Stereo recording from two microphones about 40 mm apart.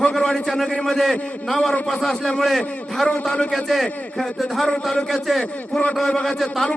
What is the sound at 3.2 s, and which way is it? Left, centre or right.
Speech, left.